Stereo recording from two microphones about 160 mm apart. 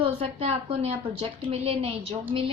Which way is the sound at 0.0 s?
35° right (ahead or behind).